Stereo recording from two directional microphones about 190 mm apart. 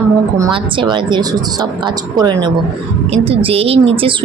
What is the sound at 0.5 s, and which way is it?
A woman's voice, 25° right (ahead or behind).